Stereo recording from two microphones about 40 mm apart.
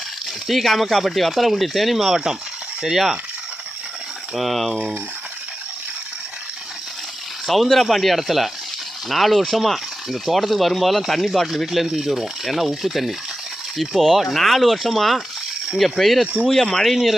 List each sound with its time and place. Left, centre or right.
0.4 s speech: centre
2.8 s mechanisms: centre
4.4 s speech: centre
7.4 s speech: centre
16.2 s speech: right
16.7 s speech: centre